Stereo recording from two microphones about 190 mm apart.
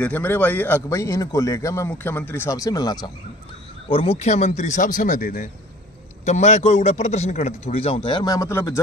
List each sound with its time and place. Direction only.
0.0 s a man's voice: 10° left (ahead or behind)
3.9 s a man's voice: 30° left (ahead or behind); by 8.8 s 15° left (ahead or behind)